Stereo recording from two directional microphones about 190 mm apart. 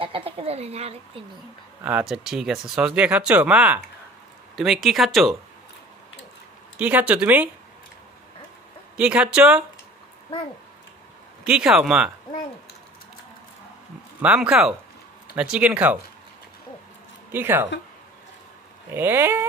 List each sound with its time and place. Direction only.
0.0 s speech: 30° right (ahead or behind)
1.8 s speech: 5° right (ahead or behind)
6.8 s speech: 10° right (ahead or behind)
8.9 s speech: 5° right (ahead or behind)
11.4 s speech: 5° right (ahead or behind)
14.2 s speech: 5° right (ahead or behind)
17.3 s speech: 10° right (ahead or behind)
18.9 s speech: 10° right (ahead or behind)